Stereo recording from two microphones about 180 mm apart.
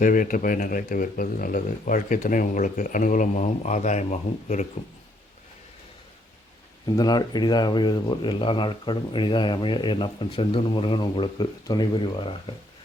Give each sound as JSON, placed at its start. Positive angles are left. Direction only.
{"t": 0.0, "sound": "speech", "side_deg": 50}
{"t": 6.8, "sound": "speech", "side_deg": 20}